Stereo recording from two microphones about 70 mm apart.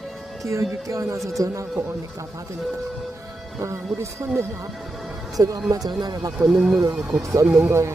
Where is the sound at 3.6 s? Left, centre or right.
Right.